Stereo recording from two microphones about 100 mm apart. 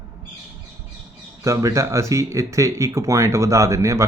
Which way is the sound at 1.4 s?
35° right (ahead or behind).